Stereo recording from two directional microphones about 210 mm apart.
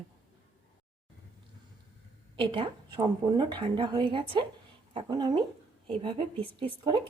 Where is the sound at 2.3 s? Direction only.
25° right (ahead or behind).